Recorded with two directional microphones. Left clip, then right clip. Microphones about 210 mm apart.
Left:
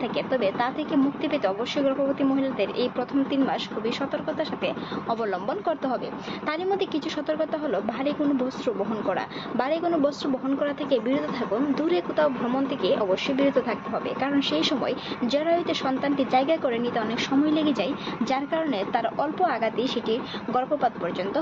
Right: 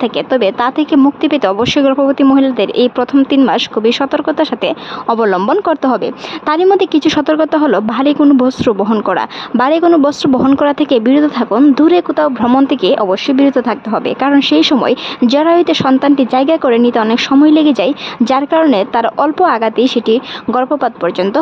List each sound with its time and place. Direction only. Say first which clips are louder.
0.0 s speech: right 13 dB; 45° right (ahead or behind)